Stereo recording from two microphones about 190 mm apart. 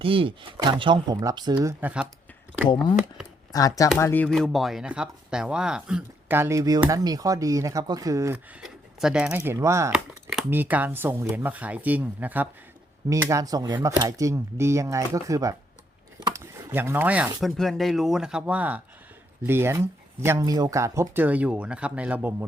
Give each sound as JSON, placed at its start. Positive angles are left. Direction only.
{"t": 0.0, "sound": "speech", "side_deg": -30}
{"t": 1.8, "sound": "speech", "side_deg": -5}
{"t": 3.5, "sound": "speech", "side_deg": 20}
{"t": 8.6, "sound": "speech", "side_deg": -5}